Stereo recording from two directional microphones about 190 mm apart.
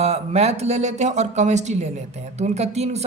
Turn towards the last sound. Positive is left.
turn(degrees=-35)  # may be behind; listen again after turning